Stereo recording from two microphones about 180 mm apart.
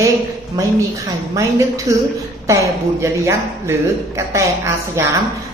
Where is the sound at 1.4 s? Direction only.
20° right (ahead or behind).